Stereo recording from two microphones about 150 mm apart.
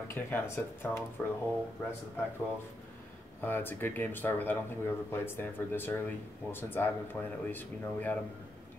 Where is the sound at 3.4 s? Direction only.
15° left (ahead or behind).